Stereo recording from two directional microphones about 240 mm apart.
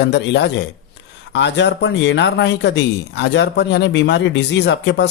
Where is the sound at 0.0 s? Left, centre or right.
Left.